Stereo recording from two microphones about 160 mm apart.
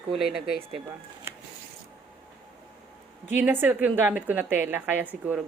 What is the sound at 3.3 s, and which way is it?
A woman's voice, 10° right (ahead or behind).